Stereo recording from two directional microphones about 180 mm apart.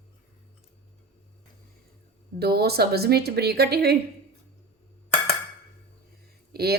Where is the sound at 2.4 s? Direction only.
60° right (ahead or behind).